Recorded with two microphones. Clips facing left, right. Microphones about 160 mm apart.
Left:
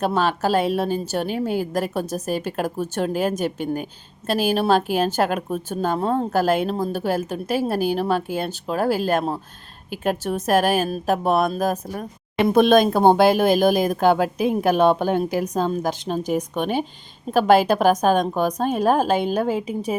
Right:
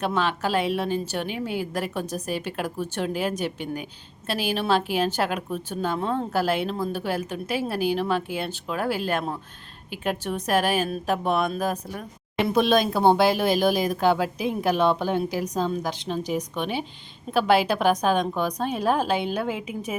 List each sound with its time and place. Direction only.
0.0 s a woman's voice: 40° left (ahead or behind)